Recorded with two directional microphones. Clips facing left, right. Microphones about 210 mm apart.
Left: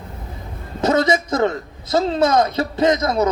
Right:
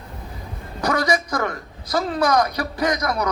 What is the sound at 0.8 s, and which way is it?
A man's voice, 25° left (ahead or behind).